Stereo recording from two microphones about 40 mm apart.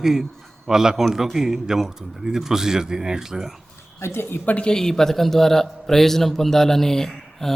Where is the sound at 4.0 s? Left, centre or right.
Left.